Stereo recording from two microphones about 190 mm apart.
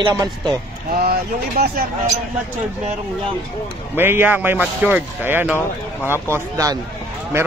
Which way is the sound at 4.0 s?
10° right (ahead or behind).